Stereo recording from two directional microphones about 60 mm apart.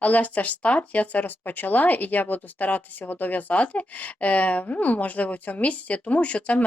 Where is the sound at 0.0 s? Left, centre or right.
Left.